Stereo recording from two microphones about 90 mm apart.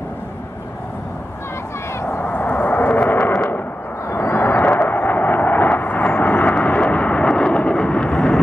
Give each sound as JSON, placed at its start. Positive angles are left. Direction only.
{"t": 2.0, "sound": "vehicle", "side_deg": 25}
{"t": 4.1, "sound": "a sound", "side_deg": 25}
{"t": 6.5, "sound": "vehicle", "side_deg": 15}